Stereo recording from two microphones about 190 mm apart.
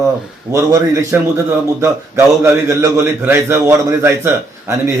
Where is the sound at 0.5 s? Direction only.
15° right (ahead or behind).